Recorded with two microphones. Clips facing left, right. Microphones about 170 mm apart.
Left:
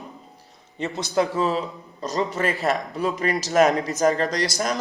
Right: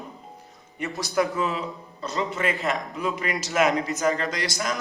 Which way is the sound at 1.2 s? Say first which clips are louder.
Left 4 dB; 35° left (ahead or behind).